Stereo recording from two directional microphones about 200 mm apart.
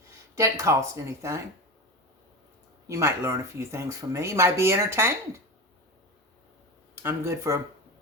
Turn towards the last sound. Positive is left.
turn(degrees=-15)  # may be behind; listen again after turning